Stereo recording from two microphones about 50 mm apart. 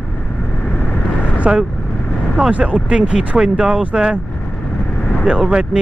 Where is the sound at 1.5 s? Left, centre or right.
Centre.